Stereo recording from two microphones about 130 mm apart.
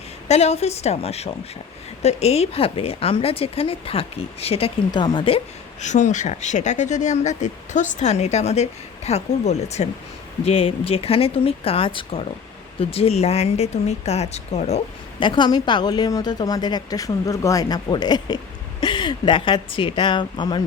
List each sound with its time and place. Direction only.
0.3 s speech: 55° left (ahead or behind)
4.9 s a woman's voice: 35° left (ahead or behind)
5.8 s speech: 65° left (ahead or behind)
10.4 s speech: 45° left (ahead or behind)
15.2 s a woman's voice: 35° left (ahead or behind)